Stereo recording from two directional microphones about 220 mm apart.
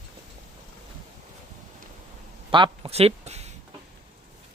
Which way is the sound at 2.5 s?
25° right (ahead or behind).